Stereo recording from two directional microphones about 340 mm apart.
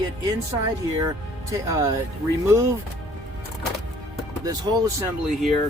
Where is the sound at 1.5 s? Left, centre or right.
Centre.